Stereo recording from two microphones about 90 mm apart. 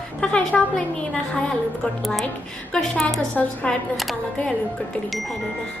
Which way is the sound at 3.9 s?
Centre (ahead or behind).